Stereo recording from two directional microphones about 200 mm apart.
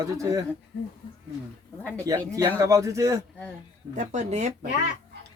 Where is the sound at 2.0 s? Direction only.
15° right (ahead or behind).